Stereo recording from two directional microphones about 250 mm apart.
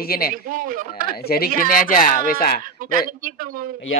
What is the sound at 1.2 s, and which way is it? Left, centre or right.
Speech, left.